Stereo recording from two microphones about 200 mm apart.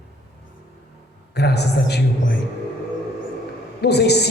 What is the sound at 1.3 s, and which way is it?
A woman's voice, 55° left (ahead or behind).